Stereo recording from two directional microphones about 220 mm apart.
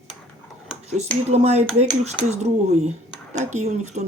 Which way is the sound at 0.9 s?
30° right (ahead or behind).